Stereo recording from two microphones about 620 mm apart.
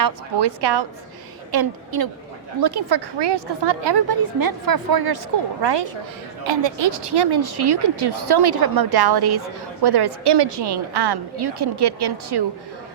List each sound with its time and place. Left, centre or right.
0.0 s a woman's voice: right